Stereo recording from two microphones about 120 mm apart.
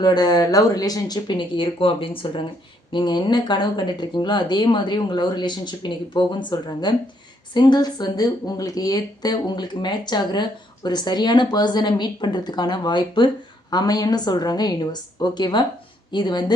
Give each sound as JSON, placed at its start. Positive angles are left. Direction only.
{"t": 0.0, "sound": "speech", "side_deg": 35}